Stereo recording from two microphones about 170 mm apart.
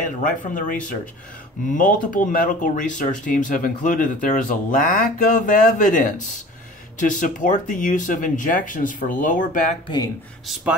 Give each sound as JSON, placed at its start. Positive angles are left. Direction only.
{"t": 0.0, "sound": "speech", "side_deg": 50}
{"t": 1.7, "sound": "speech", "side_deg": 50}
{"t": 10.4, "sound": "speech", "side_deg": -5}